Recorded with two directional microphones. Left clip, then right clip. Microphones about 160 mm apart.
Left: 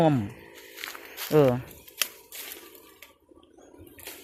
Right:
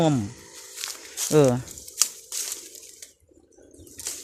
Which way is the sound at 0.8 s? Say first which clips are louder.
Right 5 dB; 20° right (ahead or behind).